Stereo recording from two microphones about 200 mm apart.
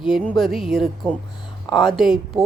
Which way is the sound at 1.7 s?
25° left (ahead or behind).